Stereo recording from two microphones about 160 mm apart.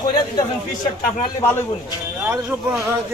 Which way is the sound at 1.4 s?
25° left (ahead or behind).